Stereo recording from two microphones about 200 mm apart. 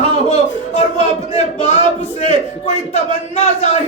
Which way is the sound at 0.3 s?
35° left (ahead or behind).